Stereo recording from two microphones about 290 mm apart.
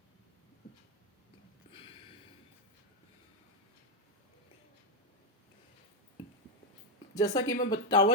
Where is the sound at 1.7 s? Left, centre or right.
Centre.